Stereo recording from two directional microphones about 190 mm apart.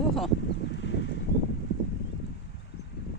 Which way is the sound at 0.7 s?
70° left (ahead or behind).